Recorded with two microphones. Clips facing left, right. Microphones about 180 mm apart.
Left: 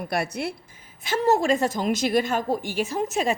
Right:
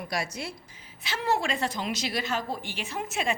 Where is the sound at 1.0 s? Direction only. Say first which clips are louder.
Left 7 dB; 45° left (ahead or behind).